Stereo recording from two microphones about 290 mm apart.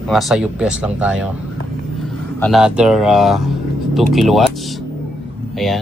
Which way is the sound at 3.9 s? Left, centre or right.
Centre.